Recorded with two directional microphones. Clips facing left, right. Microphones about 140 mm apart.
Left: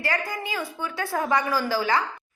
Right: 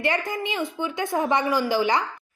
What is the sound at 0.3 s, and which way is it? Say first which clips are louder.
A woman's voice: right 3 dB; 20° right (ahead or behind).